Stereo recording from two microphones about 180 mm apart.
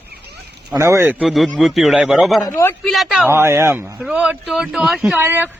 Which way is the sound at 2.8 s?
Centre (ahead or behind).